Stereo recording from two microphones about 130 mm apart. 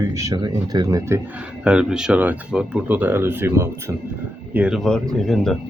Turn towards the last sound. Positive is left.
turn(degrees=0)  # may be behind; listen again after turning